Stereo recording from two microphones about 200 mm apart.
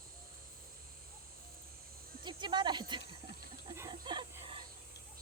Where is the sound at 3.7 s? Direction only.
20° right (ahead or behind).